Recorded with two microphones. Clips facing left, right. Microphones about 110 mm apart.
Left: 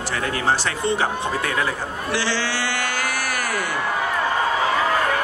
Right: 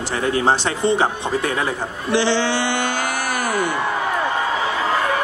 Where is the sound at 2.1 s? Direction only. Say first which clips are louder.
Right 7 dB; 20° right (ahead or behind).